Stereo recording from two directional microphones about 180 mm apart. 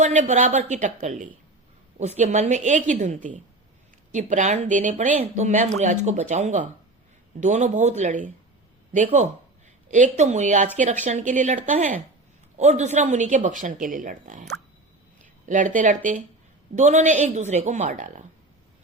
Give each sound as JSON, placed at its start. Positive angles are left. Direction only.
{"t": 0.0, "sound": "speech", "side_deg": -45}
{"t": 15.2, "sound": "a sound", "side_deg": -45}
{"t": 16.7, "sound": "speech", "side_deg": -40}